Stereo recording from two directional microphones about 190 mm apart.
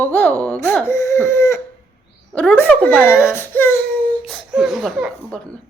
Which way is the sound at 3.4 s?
10° left (ahead or behind).